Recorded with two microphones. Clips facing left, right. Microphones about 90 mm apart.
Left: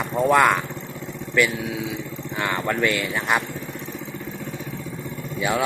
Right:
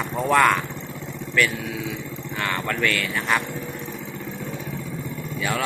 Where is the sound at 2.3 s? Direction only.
15° left (ahead or behind).